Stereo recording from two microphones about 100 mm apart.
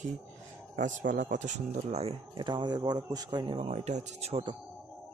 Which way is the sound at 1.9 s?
90° right.